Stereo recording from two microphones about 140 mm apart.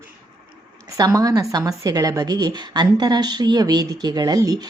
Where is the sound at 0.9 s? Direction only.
25° right (ahead or behind).